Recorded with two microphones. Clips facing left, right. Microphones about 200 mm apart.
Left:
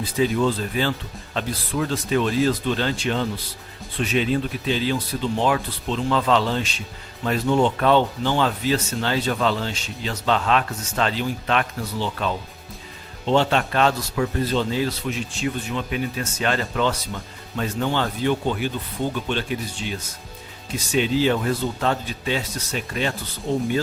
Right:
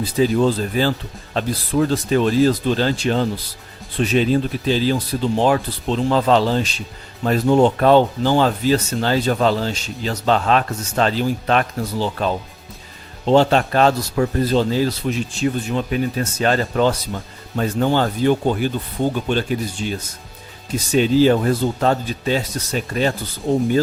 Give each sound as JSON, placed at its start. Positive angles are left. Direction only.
{"t": 0.2, "sound": "speech", "side_deg": -35}
{"t": 20.9, "sound": "speech", "side_deg": -40}